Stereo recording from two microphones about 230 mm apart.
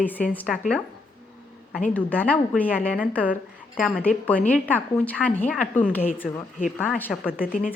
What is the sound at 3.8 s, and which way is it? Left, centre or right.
A woman's voice, centre.